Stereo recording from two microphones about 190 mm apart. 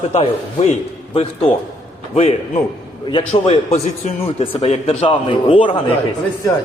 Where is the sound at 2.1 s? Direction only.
30° left (ahead or behind).